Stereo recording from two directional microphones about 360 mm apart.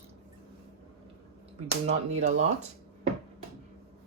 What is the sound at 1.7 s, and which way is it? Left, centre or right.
Speech, centre.